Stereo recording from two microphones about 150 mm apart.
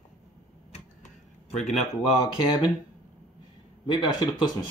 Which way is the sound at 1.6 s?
50° left (ahead or behind).